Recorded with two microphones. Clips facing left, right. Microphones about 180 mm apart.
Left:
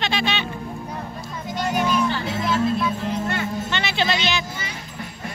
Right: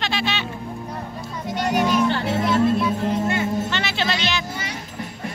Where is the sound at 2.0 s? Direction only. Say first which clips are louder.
Right 3 dB; 65° right (ahead or behind).